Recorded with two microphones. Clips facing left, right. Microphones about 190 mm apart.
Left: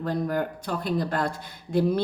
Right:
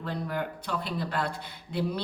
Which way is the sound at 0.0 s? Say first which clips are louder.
Left 6 dB; 45° left (ahead or behind).